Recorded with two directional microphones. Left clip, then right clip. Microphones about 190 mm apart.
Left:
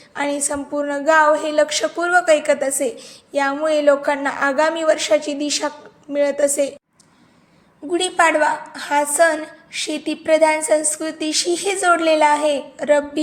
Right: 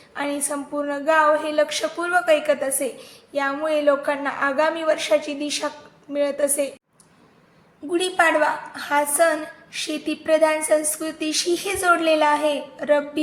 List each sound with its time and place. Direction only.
0.1 s a woman's voice: 30° left (ahead or behind)
7.9 s a woman's voice: 20° left (ahead or behind)